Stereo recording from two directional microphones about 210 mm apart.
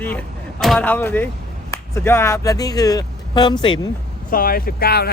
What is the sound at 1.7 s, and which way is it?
Speech, 10° left (ahead or behind).